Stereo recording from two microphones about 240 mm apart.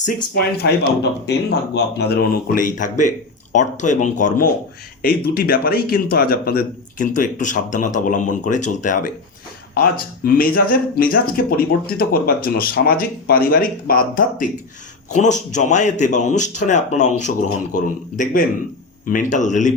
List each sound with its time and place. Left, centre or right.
0.3 s speech: left
10.2 s speech: left